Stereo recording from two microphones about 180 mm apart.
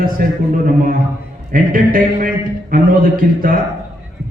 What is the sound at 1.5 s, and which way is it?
A man's voice, 50° right (ahead or behind).